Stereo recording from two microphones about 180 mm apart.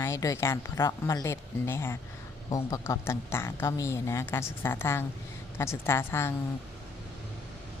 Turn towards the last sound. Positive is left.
turn(degrees=15)  # may be behind; listen again after turning